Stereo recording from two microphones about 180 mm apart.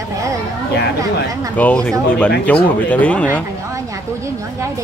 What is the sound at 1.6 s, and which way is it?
Speech, 5° left (ahead or behind).